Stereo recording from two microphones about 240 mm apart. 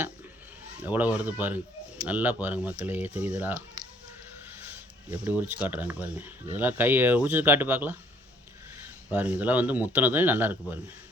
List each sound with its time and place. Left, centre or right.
0.8 s speech: centre
3.8 s a sound: centre
5.0 s speech: centre
9.0 s speech: centre